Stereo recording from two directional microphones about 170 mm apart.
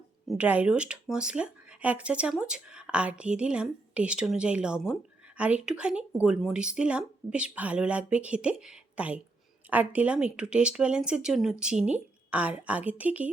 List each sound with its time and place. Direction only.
0.3 s speech: 10° right (ahead or behind)